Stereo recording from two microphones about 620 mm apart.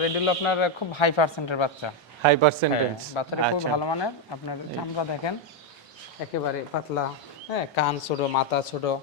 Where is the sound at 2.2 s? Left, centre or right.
Right.